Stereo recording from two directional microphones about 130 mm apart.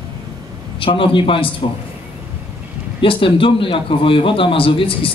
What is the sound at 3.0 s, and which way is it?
A man's voice, 45° left (ahead or behind).